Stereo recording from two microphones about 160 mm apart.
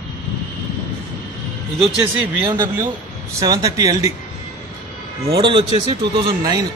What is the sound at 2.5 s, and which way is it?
Speech, 25° right (ahead or behind).